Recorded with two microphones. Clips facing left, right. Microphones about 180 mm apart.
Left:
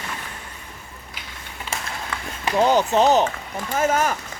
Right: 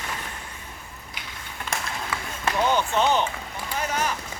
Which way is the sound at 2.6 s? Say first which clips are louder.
Left 6 dB; 40° left (ahead or behind).